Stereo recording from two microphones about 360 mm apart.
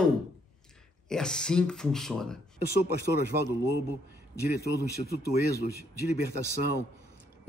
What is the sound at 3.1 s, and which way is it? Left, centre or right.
Speech, centre.